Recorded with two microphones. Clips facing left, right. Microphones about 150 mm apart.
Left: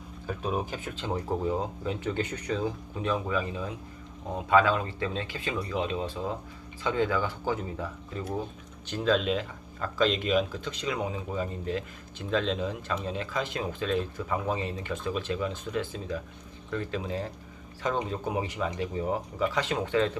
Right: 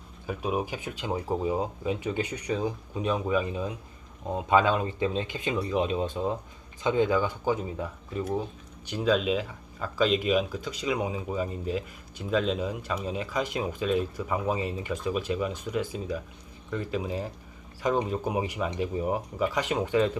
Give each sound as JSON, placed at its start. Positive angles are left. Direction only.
{"t": 0.3, "sound": "speech", "side_deg": -10}